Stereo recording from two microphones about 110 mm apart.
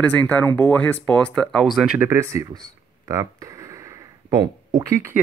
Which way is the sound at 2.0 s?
25° right (ahead or behind).